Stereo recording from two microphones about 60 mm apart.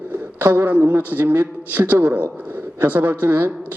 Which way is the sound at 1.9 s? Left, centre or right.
Right.